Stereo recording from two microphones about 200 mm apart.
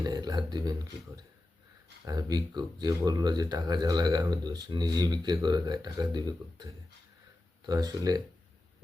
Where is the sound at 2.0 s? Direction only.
20° right (ahead or behind).